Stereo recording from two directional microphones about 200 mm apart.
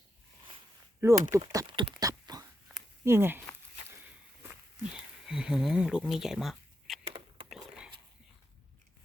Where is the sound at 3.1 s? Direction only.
10° right (ahead or behind).